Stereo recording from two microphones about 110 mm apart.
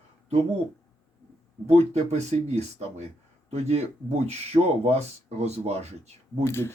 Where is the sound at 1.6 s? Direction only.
85° right.